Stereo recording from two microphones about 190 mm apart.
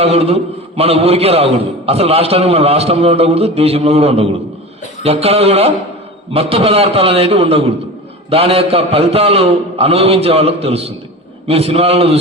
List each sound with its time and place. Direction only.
0.0 s a man's voice: 30° right (ahead or behind)